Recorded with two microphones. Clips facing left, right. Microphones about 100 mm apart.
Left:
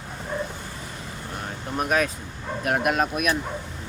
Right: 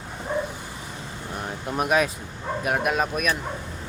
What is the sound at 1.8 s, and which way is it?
Speech, 5° right (ahead or behind).